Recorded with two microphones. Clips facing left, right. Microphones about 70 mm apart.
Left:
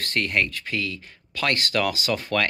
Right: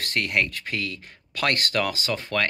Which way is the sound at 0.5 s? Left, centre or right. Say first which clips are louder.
Left 2 dB; right.